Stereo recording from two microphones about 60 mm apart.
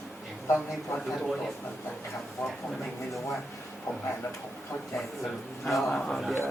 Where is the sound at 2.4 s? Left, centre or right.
Left.